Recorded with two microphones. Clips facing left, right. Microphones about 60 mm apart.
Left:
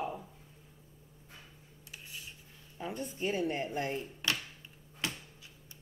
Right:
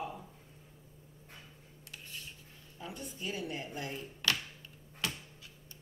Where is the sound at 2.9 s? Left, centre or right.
Left.